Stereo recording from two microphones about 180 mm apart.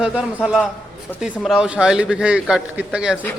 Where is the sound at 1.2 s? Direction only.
5° right (ahead or behind).